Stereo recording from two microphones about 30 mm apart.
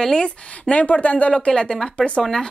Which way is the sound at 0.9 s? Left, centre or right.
Left.